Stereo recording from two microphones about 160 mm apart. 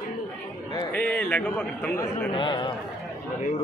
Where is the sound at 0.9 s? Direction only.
10° left (ahead or behind).